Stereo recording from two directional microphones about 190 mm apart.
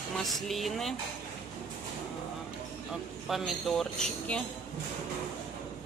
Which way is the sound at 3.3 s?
Centre (ahead or behind).